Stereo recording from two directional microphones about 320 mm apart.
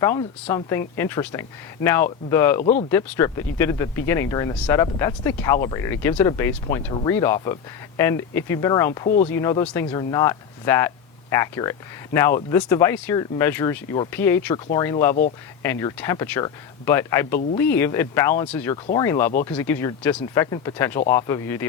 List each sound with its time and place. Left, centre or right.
0.0 s speech: centre
2.6 s speech: left
2.9 s speech: centre
9.0 s speech: left
9.3 s speech: centre